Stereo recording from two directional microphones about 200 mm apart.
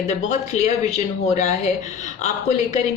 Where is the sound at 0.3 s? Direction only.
35° left (ahead or behind).